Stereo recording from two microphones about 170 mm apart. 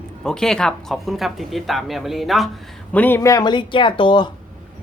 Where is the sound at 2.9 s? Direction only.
10° left (ahead or behind); by 4.2 s 30° left (ahead or behind).